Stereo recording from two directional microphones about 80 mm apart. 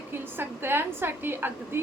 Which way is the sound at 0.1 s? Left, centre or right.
Right.